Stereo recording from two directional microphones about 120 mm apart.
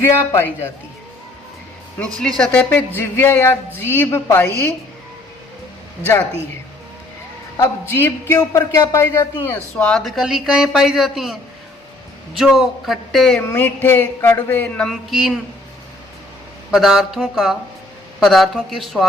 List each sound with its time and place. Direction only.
0.2 s a man's voice: 20° left (ahead or behind)
2.1 s a sound: 5° left (ahead or behind)
3.8 s a man's voice: 20° left (ahead or behind)
7.5 s a man's voice: 20° left (ahead or behind)
10.0 s a woman's voice: 5° right (ahead or behind)
12.4 s a woman's voice: centre (ahead or behind)
13.3 s a sound: 15° left (ahead or behind); by 15.4 s centre (ahead or behind)
16.7 s a woman's voice: centre (ahead or behind)